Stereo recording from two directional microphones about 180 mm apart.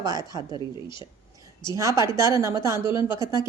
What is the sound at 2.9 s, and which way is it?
Speech, 25° left (ahead or behind).